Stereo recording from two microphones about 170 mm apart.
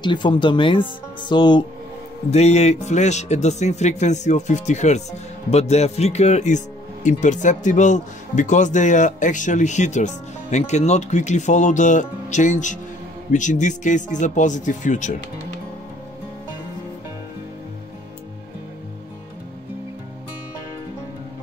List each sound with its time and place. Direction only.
0.0 s speech: 25° left (ahead or behind)
2.3 s speech: 40° left (ahead or behind)